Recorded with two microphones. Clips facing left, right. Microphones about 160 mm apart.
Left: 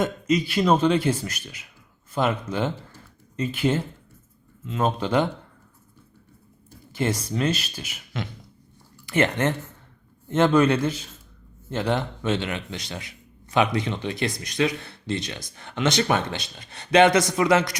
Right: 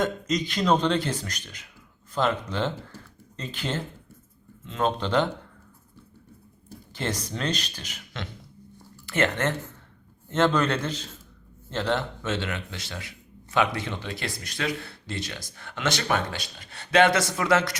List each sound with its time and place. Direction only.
0.0 s a man's voice: 10° left (ahead or behind)
6.9 s a man's voice: 10° left (ahead or behind)